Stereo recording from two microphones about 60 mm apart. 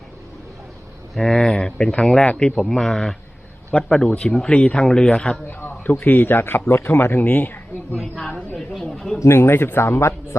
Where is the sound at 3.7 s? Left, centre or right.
Centre.